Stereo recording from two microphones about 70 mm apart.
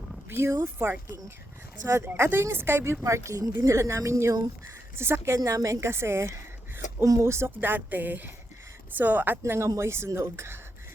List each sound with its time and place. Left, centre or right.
0.3 s speech: right
2.0 s speech: right
3.0 s speech: right
5.5 s a woman's voice: right
9.4 s speech: right